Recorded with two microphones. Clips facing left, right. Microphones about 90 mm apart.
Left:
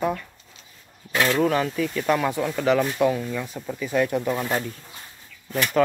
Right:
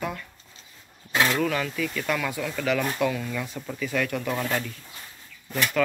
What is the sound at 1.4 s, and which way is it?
Speech, 30° left (ahead or behind).